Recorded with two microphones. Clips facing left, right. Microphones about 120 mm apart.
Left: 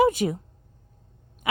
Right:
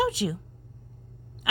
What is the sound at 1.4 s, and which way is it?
Owl, 50° left (ahead or behind).